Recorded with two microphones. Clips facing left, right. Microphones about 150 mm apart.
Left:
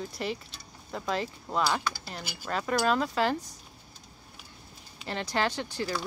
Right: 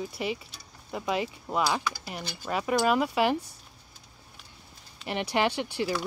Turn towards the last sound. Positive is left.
turn(degrees=-10)  # may be behind; listen again after turning